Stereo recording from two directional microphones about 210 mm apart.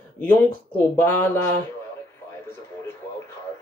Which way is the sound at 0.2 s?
10° left (ahead or behind).